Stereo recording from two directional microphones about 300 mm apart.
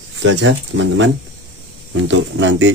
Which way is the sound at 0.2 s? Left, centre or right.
Right.